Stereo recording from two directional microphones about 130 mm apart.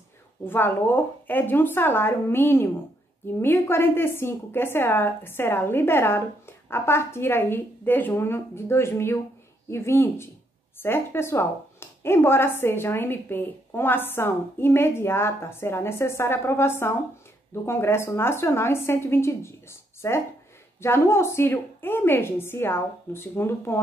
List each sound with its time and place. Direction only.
0.5 s a woman's voice: 15° left (ahead or behind)